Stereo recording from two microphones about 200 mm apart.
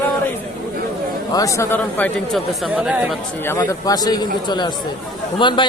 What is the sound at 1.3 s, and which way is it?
Speech, 15° left (ahead or behind).